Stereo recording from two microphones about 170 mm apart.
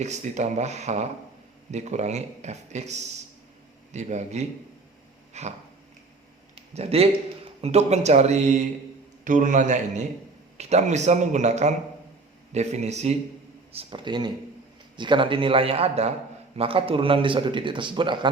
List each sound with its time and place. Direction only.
0.0 s a man's voice: 45° right (ahead or behind)
5.3 s a sound: 40° right (ahead or behind)
6.7 s a man's voice: 40° right (ahead or behind)
13.7 s a man's voice: 30° right (ahead or behind)